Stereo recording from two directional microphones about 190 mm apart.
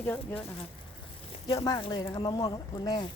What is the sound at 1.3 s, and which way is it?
Speech, 30° left (ahead or behind).